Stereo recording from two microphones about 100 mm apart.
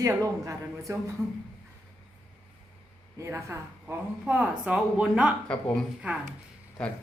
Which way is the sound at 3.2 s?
30° right (ahead or behind).